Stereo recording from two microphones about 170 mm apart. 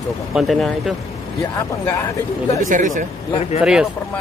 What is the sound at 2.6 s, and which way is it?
Speech, 50° right (ahead or behind).